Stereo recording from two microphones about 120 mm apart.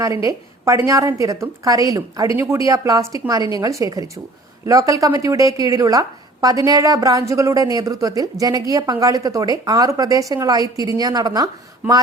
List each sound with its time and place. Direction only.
0.0 s a woman's voice: 30° right (ahead or behind)